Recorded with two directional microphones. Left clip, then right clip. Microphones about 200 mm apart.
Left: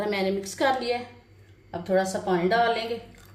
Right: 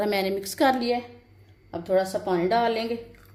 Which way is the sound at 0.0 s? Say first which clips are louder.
Right 1 dB; 50° right (ahead or behind).